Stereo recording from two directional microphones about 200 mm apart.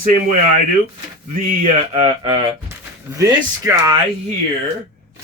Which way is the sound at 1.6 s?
30° right (ahead or behind).